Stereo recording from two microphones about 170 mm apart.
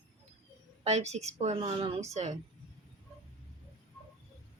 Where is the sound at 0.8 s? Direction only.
40° right (ahead or behind).